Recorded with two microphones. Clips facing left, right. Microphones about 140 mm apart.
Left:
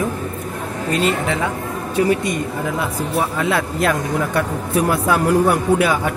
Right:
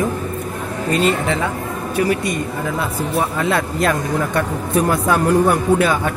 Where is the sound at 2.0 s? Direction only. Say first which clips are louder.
Left 1 dB; 20° left (ahead or behind).